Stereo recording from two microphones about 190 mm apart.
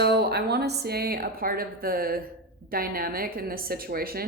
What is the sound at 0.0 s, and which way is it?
A woman's voice, 60° right (ahead or behind).